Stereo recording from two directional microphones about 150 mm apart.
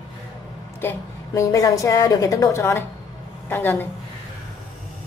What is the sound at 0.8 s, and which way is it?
A woman's voice, 15° left (ahead or behind).